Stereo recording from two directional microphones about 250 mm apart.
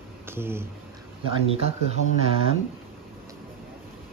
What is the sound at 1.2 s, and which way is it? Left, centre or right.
Speech, right.